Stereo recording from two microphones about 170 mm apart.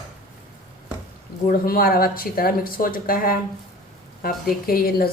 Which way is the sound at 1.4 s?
60° left (ahead or behind).